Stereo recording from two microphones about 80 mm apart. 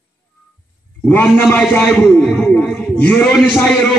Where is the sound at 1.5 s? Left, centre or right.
Centre.